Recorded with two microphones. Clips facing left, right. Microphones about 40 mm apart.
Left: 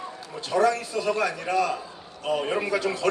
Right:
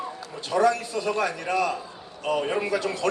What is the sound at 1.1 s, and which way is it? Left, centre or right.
Speech, right.